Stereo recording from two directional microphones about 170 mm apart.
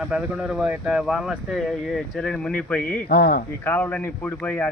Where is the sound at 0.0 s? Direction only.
5° right (ahead or behind).